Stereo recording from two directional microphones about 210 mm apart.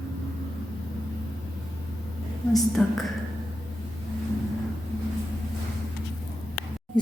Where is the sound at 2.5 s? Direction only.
Centre (ahead or behind).